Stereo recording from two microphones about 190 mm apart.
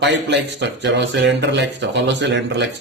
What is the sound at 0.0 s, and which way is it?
Speech, 70° right (ahead or behind).